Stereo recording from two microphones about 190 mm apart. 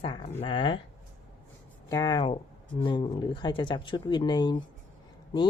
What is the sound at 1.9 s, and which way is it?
Speech, 20° left (ahead or behind).